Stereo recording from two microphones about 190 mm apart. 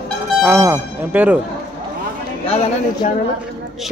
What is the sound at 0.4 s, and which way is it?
Speech, 10° right (ahead or behind).